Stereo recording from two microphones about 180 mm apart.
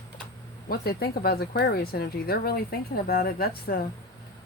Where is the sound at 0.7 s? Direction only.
60° left (ahead or behind).